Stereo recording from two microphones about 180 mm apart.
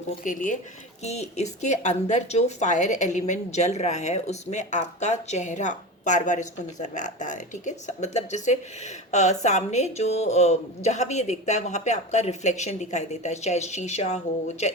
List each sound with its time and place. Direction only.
0.3 s speech: 45° left (ahead or behind)